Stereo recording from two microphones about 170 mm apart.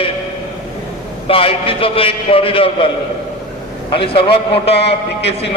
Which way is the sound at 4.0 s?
30° left (ahead or behind).